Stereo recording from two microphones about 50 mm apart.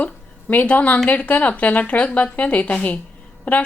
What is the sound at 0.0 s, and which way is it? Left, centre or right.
A woman's voice, left.